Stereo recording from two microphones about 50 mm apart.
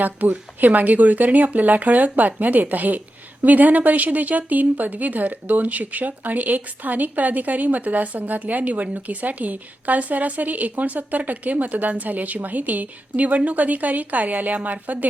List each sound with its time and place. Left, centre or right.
0.0 s speech: right